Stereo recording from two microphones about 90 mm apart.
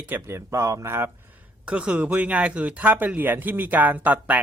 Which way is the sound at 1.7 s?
15° right (ahead or behind).